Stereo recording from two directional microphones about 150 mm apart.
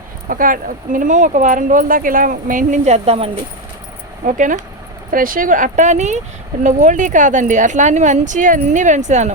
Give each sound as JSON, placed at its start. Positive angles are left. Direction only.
{"t": 0.3, "sound": "speech", "side_deg": -65}
{"t": 4.3, "sound": "speech", "side_deg": -60}